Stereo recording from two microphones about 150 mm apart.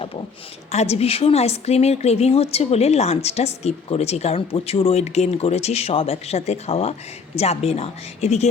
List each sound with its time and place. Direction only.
0.7 s a woman's voice: 45° left (ahead or behind)